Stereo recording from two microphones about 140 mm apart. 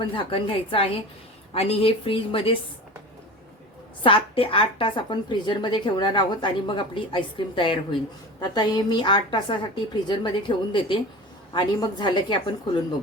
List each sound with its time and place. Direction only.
0.1 s a woman's voice: 40° left (ahead or behind)
4.0 s a woman's voice: 40° left (ahead or behind)